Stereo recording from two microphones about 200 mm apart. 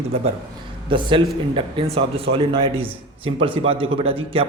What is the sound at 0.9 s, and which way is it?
A man's voice, 25° right (ahead or behind).